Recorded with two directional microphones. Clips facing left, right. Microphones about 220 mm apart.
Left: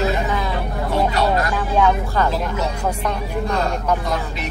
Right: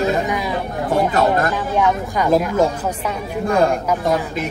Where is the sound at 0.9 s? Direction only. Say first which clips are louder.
Right 3 dB; 50° right (ahead or behind).